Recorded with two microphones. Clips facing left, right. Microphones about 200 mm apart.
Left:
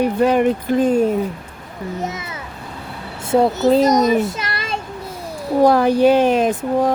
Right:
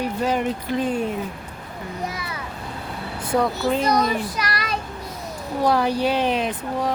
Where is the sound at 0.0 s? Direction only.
60° left (ahead or behind); by 1.1 s 45° left (ahead or behind).